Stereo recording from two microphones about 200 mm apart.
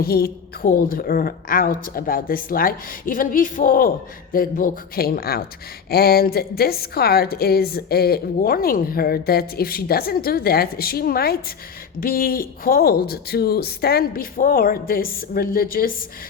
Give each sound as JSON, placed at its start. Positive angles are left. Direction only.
{"t": 0.0, "sound": "a woman's voice", "side_deg": 50}